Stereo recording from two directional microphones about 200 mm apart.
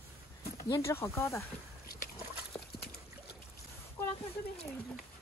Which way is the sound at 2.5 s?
10° left (ahead or behind).